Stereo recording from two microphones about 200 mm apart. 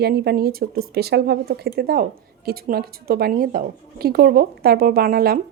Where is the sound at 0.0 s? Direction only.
50° right (ahead or behind).